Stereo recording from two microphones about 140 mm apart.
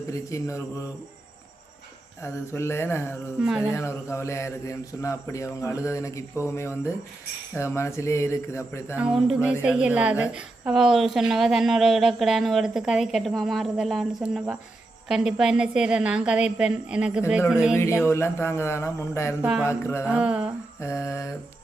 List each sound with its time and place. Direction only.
0.1 s a man's voice: 20° left (ahead or behind)
2.2 s a man's voice: 20° left (ahead or behind)
9.0 s a woman's voice: 10° right (ahead or behind)
17.7 s a man's voice: 20° left (ahead or behind)
19.4 s a woman's voice: 5° right (ahead or behind)
19.6 s a man's voice: 20° left (ahead or behind)
20.1 s a woman's voice: 5° right (ahead or behind)
20.8 s a man's voice: 20° left (ahead or behind)